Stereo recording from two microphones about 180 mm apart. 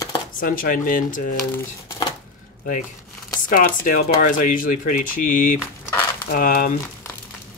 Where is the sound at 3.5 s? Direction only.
50° left (ahead or behind).